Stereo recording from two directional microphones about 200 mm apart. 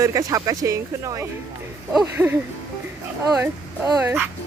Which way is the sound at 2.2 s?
5° right (ahead or behind).